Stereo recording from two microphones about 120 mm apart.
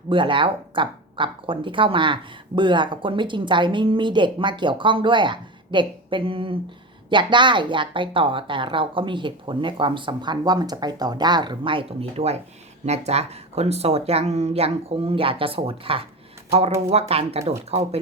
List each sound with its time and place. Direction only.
0.1 s speech: 45° right (ahead or behind)